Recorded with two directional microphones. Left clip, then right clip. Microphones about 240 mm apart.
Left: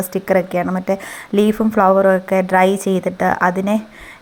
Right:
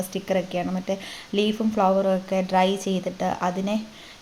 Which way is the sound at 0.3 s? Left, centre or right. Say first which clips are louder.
Left 9 dB; centre.